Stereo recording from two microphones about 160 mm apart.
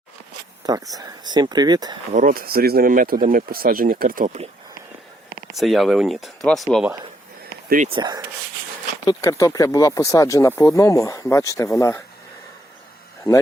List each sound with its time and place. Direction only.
0.9 s speech: 25° right (ahead or behind)
2.1 s speech: 60° right (ahead or behind)
5.5 s speech: centre (ahead or behind)
7.9 s speech: 30° right (ahead or behind)
9.0 s speech: 20° left (ahead or behind)